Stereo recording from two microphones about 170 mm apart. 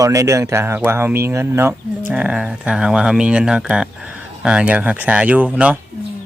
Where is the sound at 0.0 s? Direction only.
20° right (ahead or behind).